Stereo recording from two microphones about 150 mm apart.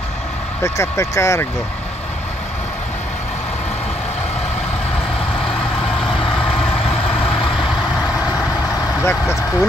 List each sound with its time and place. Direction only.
0.7 s speech: 20° left (ahead or behind)
9.0 s speech: 15° left (ahead or behind)